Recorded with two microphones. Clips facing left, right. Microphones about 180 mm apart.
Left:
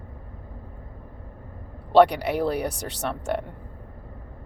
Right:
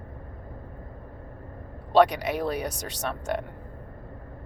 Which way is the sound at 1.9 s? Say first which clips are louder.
Left 3 dB; 65° left (ahead or behind).